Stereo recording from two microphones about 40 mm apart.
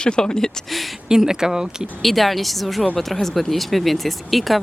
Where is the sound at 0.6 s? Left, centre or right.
Centre.